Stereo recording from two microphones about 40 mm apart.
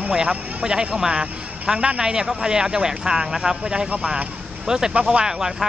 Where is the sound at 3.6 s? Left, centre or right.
Right.